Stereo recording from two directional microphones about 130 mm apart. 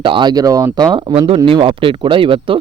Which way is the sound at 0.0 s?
40° right (ahead or behind).